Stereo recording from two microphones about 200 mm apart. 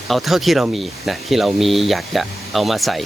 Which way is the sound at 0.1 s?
Centre (ahead or behind).